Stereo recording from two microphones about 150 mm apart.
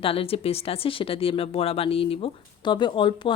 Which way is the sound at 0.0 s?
40° left (ahead or behind).